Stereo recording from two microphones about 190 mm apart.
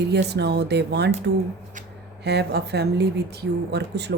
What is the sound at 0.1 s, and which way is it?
A woman's voice, 60° right (ahead or behind).